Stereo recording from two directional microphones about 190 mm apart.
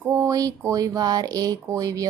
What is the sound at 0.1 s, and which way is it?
Speech, 20° right (ahead or behind).